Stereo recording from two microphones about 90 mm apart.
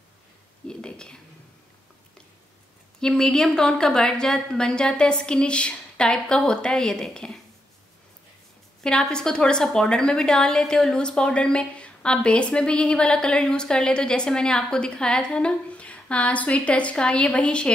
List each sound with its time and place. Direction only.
0.7 s speech: 10° left (ahead or behind)
3.0 s a woman's voice: 10° left (ahead or behind)
8.8 s a woman's voice: 5° left (ahead or behind)